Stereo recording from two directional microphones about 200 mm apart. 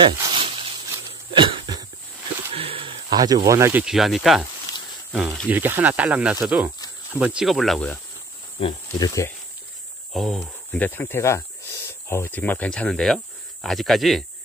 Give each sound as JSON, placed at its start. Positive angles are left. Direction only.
{"t": 0.0, "sound": "a sound", "side_deg": -30}
{"t": 1.3, "sound": "cough", "side_deg": -20}
{"t": 2.5, "sound": "a sound", "side_deg": -30}
{"t": 3.4, "sound": "speech", "side_deg": -15}
{"t": 3.8, "sound": "speech", "side_deg": 0}
{"t": 8.5, "sound": "speech", "side_deg": 25}
{"t": 10.1, "sound": "speech", "side_deg": 0}